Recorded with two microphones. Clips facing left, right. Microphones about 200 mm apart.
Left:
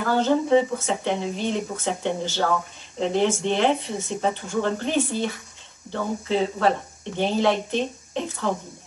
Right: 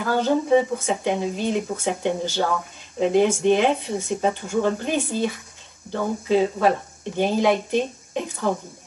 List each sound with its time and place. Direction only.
0.0 s speech: 15° right (ahead or behind)